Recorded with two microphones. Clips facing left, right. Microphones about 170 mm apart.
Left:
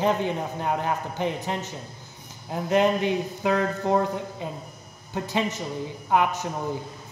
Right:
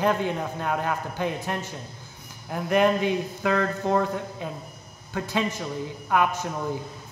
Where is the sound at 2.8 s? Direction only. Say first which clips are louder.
Right 1 dB; 15° left (ahead or behind).